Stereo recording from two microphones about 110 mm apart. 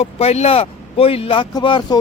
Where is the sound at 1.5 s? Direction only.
45° left (ahead or behind).